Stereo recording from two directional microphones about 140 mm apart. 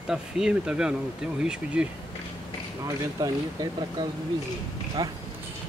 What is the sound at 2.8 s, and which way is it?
Speech, 30° right (ahead or behind).